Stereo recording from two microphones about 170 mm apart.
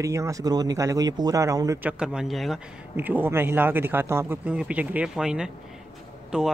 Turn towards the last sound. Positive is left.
turn(degrees=-5)  # may be behind; listen again after turning